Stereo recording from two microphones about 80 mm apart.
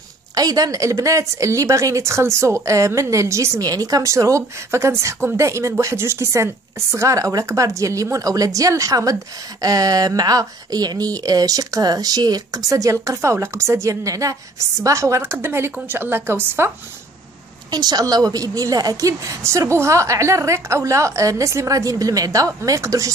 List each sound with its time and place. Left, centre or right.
0.3 s a woman's voice: right
17.6 s a woman's voice: right